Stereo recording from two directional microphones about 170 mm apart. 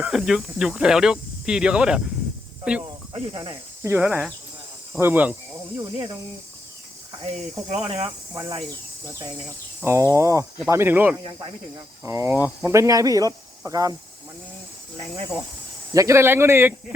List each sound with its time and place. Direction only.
0.0 s speech: centre (ahead or behind)
3.1 s speech: 30° right (ahead or behind)
3.8 s speech: 10° right (ahead or behind)
7.1 s speech: 35° right (ahead or behind)
8.3 s speech: 20° right (ahead or behind)
9.8 s speech: 15° right (ahead or behind)
11.2 s speech: 30° right (ahead or behind)
12.0 s speech: 15° right (ahead or behind)
14.9 s speech: 35° right (ahead or behind)
15.9 s speech: 20° right (ahead or behind)